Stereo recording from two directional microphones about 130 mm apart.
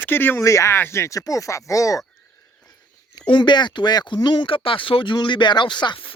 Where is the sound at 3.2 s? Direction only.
35° left (ahead or behind).